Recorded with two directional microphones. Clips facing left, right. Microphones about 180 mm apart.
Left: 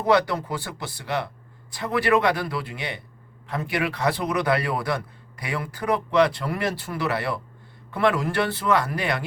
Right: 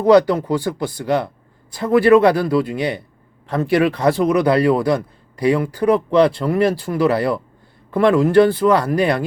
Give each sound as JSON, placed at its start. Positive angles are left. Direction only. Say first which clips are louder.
{"t": 0.0, "sound": "speech", "louder": "right 9 dB", "side_deg": -30}
{"t": 1.7, "sound": "speech", "louder": "right 10 dB", "side_deg": -25}